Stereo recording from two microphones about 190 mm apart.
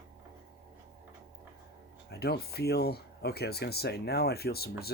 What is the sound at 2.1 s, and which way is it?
Speech, 55° left (ahead or behind).